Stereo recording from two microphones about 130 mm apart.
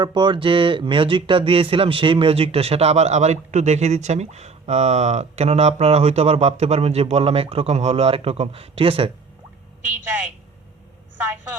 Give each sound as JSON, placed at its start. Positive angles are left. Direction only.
{"t": 0.0, "sound": "speech", "side_deg": -35}